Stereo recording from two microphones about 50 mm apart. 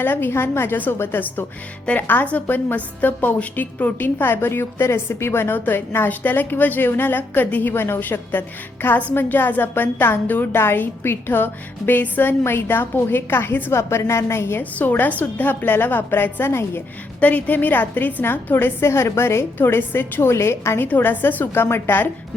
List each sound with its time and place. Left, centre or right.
0.0 s a woman's voice: left
12.5 s a woman's voice: left
13.7 s a woman's voice: left
14.6 s a woman's voice: left
17.2 s a woman's voice: left
18.8 s a woman's voice: left
20.3 s a woman's voice: left
20.8 s a woman's voice: left
21.6 s a woman's voice: left